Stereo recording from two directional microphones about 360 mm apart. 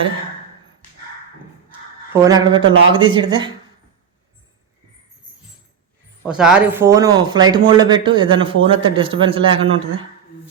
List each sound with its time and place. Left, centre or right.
2.1 s speech: centre
2.6 s a man's voice: right
2.9 s speech: centre
6.2 s speech: centre